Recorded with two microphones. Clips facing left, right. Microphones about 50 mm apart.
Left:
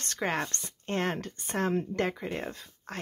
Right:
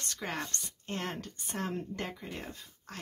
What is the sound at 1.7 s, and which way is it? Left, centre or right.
Speech, left.